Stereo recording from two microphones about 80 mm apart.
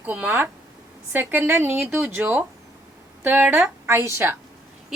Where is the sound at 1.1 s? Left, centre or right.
Right.